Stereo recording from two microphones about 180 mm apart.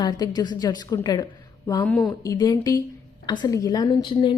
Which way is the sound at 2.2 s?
20° left (ahead or behind).